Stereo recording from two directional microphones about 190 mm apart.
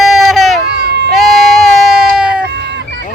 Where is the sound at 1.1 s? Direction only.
Centre (ahead or behind).